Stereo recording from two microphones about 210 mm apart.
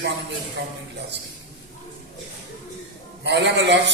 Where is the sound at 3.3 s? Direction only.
55° right (ahead or behind).